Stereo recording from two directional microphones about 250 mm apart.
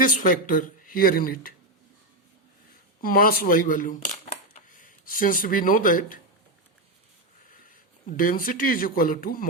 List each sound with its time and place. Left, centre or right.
0.0 s speech: left
3.0 s speech: left
7.4 s speech: left